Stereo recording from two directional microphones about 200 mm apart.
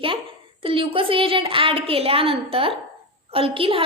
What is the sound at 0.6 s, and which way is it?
A woman's voice, 25° right (ahead or behind).